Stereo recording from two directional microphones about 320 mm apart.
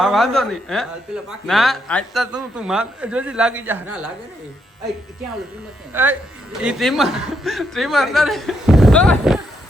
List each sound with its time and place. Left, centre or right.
0.0 s speech: centre
5.9 s speech: centre